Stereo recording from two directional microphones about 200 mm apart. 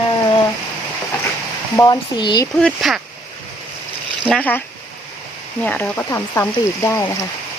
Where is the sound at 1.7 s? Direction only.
20° left (ahead or behind).